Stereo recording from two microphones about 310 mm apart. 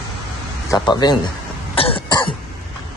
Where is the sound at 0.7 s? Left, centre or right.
Centre.